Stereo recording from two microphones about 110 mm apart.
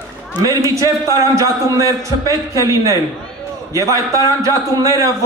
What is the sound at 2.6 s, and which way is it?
A man's voice, 30° right (ahead or behind).